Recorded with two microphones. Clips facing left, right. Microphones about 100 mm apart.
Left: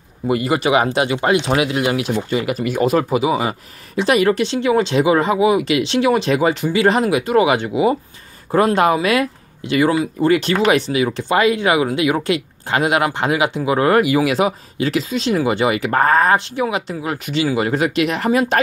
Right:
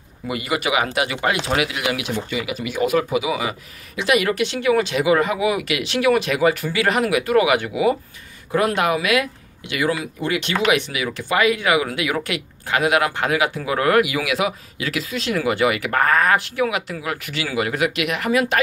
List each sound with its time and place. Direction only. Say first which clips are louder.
0.3 s speech: left 6 dB; 35° left (ahead or behind)